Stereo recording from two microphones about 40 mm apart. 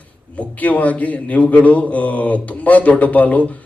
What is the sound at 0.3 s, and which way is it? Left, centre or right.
Speech, left.